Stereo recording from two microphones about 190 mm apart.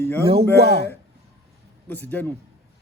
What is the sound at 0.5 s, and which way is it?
Speech, 60° right (ahead or behind).